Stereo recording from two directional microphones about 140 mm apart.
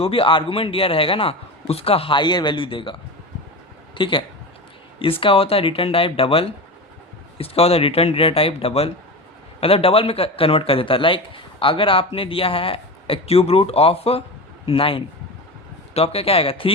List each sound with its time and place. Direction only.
0.0 s a man's voice: 40° left (ahead or behind)
3.9 s speech: 35° left (ahead or behind)
5.2 s a man's voice: 40° left (ahead or behind)